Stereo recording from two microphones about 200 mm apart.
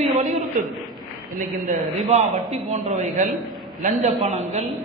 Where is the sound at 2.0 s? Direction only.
35° right (ahead or behind).